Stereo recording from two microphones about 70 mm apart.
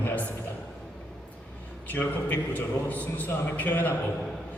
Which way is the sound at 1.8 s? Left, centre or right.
Left.